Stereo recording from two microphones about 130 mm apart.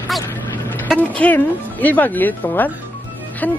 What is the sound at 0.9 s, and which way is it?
Speech, 10° left (ahead or behind).